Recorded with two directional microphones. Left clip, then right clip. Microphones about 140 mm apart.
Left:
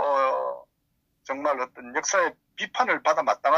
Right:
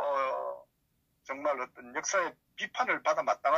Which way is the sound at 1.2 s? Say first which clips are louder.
Left 6 dB; 35° left (ahead or behind).